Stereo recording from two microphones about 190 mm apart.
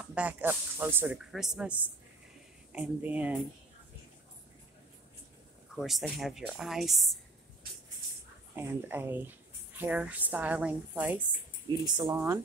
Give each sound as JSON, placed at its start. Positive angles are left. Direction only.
{"t": 0.0, "sound": "speech", "side_deg": -5}
{"t": 5.8, "sound": "speech", "side_deg": 0}
{"t": 8.5, "sound": "speech", "side_deg": -10}
{"t": 11.8, "sound": "speech", "side_deg": -20}